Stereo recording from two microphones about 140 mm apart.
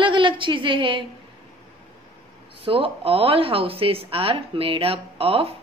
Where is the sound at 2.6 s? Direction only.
40° right (ahead or behind).